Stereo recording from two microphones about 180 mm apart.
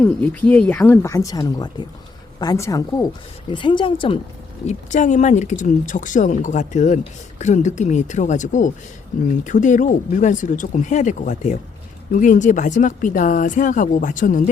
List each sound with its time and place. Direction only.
0.0 s speech: 10° left (ahead or behind); by 4.2 s 30° left (ahead or behind)
4.6 s speech: 40° left (ahead or behind)